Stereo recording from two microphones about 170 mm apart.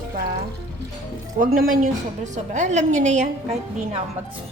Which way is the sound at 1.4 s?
55° right (ahead or behind).